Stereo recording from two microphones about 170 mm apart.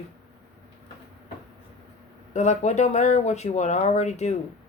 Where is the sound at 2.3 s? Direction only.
40° left (ahead or behind).